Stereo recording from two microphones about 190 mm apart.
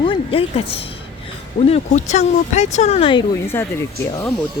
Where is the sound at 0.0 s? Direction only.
30° left (ahead or behind).